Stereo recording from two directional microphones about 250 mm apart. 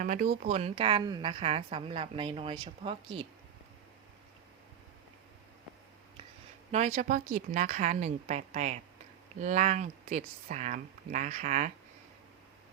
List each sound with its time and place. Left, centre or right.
0.0 s a woman's voice: right
6.7 s a woman's voice: right